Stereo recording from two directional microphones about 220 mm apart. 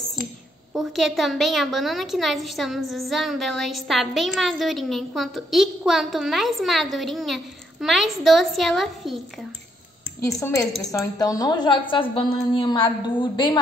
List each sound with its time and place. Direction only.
0.7 s a woman's voice: centre (ahead or behind)
10.2 s a woman's voice: 15° left (ahead or behind)